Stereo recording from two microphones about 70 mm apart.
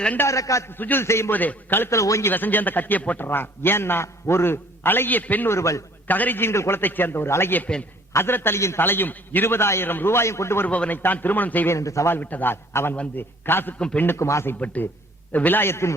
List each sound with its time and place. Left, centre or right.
0.3 s a man's voice: left
0.7 s a man's voice: left
1.0 s a man's voice: left
1.3 s a man's voice: left
1.9 s a man's voice: left
2.3 s a man's voice: left
5.5 s a man's voice: left
6.1 s a man's voice: left
10.7 s a man's voice: left
11.7 s a man's voice: left
12.0 s a man's voice: left
13.7 s a man's voice: centre
14.0 s a man's voice: left
14.6 s a man's voice: left